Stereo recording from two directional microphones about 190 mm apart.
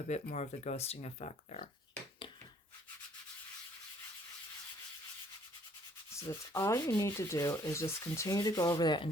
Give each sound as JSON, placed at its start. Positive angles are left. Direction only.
{"t": 0.3, "sound": "speech", "side_deg": 35}
{"t": 6.1, "sound": "sanding", "side_deg": 15}